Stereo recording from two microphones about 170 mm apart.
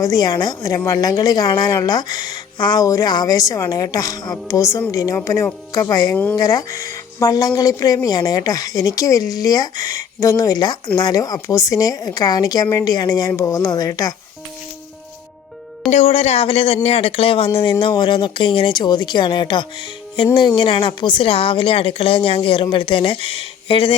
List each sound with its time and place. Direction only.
0.0 s a woman's voice: 20° left (ahead or behind)
15.9 s a woman's voice: 40° left (ahead or behind)